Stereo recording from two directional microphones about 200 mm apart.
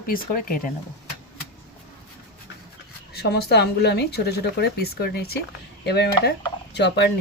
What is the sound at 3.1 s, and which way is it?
Speech, 55° left (ahead or behind).